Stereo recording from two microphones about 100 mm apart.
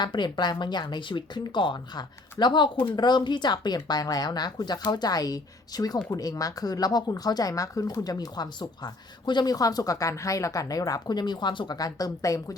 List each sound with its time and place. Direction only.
0.0 s speech: 50° left (ahead or behind)